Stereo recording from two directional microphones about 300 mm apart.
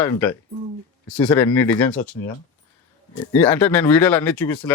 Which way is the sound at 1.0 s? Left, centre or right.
Centre.